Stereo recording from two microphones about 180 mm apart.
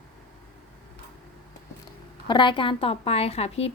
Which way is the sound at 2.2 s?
25° left (ahead or behind).